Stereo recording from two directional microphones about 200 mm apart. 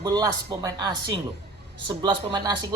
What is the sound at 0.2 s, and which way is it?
A woman's voice, 20° right (ahead or behind).